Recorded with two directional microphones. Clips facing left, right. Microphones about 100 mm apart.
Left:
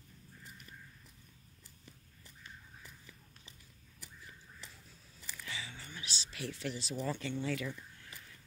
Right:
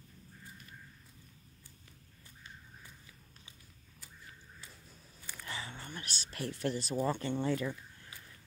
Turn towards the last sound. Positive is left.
turn(degrees=-35)  # may be behind; listen again after turning